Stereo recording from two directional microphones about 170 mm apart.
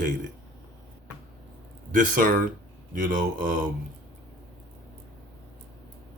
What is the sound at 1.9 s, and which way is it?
Speech, 50° right (ahead or behind).